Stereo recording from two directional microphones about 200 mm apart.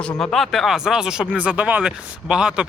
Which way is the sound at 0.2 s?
Centre (ahead or behind).